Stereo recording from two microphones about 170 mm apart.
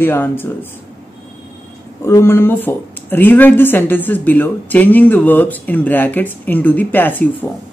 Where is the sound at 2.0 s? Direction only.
15° left (ahead or behind).